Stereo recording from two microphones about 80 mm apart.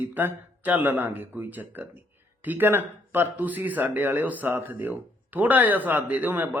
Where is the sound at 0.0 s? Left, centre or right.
Right.